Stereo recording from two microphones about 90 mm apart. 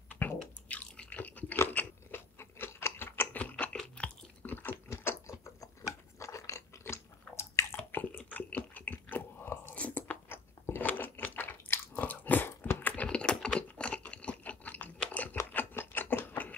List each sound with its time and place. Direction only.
0.2 s chewing: 20° left (ahead or behind)
0.7 s a sound: 15° left (ahead or behind)
1.6 s chewing: 20° left (ahead or behind)
4.8 s gears: 30° left (ahead or behind)
6.1 s chewing: 35° left (ahead or behind)
9.8 s crunch: 15° left (ahead or behind)
15.0 s chewing: 15° left (ahead or behind)
15.3 s a sound: 25° left (ahead or behind)